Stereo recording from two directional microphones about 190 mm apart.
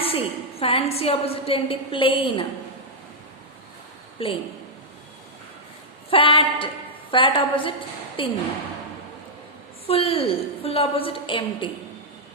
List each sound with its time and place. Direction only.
0.0 s a woman's voice: 30° left (ahead or behind)
4.2 s a woman's voice: 30° left (ahead or behind)
6.1 s a woman's voice: 30° left (ahead or behind)
9.8 s a woman's voice: 30° left (ahead or behind)